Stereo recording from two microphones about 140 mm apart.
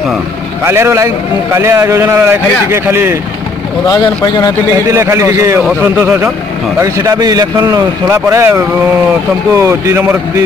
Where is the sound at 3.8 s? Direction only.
30° left (ahead or behind).